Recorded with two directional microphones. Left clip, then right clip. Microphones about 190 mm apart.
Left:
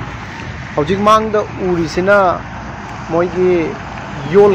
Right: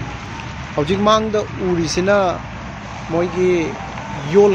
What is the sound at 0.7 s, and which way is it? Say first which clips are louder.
Speech: left 4 dB; 5° right (ahead or behind).